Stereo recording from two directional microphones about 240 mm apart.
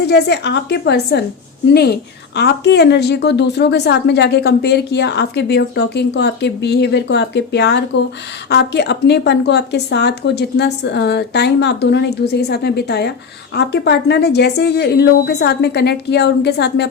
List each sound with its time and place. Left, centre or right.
0.1 s speech: left